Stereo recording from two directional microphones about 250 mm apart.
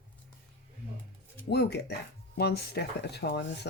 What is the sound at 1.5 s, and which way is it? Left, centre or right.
Speech, left.